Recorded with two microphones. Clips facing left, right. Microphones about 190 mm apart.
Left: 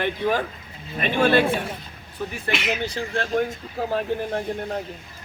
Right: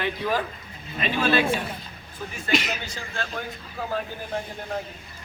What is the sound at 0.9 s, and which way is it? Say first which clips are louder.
Speech: left 4 dB; 55° left (ahead or behind).